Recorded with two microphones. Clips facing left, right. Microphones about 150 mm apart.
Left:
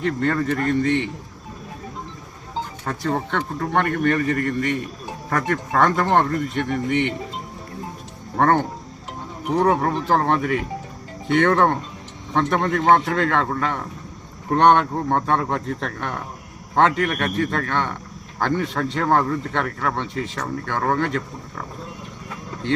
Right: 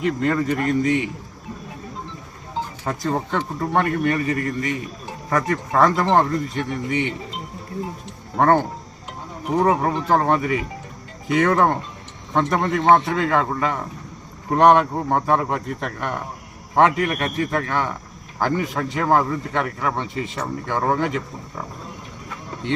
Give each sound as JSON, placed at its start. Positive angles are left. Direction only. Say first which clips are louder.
{"t": 0.0, "sound": "speech", "louder": "right 1 dB", "side_deg": -5}
{"t": 2.8, "sound": "speech", "louder": "even", "side_deg": -5}
{"t": 4.2, "sound": "a man's voice", "louder": "left 1 dB", "side_deg": 75}
{"t": 4.6, "sound": "speech", "louder": "left 2 dB", "side_deg": 0}
{"t": 8.4, "sound": "speech", "louder": "right 1 dB", "side_deg": -5}